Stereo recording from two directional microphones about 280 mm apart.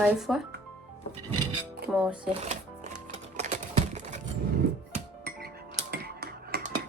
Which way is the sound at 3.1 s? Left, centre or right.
Right.